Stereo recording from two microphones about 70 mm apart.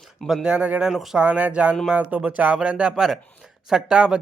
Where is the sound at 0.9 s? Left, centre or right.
Centre.